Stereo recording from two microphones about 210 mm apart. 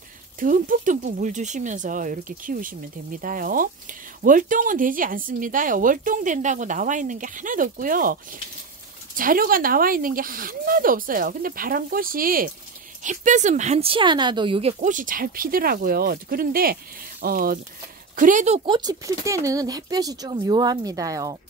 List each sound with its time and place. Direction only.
0.4 s speech: 40° right (ahead or behind)
18.7 s speech: 20° right (ahead or behind)